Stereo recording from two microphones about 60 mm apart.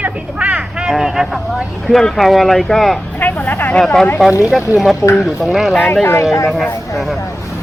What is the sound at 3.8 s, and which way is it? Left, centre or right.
Speech, centre.